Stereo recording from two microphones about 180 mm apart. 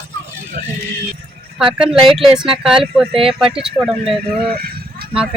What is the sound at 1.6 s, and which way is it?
A child's voice, 5° right (ahead or behind).